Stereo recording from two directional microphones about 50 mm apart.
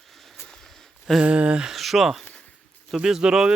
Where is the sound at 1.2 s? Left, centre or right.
Right.